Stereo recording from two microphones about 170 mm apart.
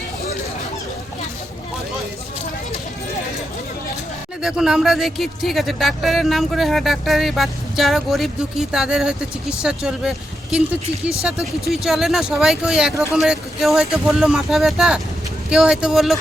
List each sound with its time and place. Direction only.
4.4 s speech: 5° right (ahead or behind)